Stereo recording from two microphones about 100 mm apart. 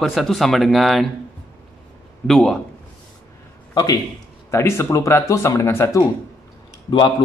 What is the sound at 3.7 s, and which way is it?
Speech, 40° left (ahead or behind).